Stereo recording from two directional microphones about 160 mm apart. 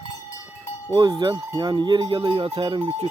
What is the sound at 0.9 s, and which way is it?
Speech, 25° right (ahead or behind).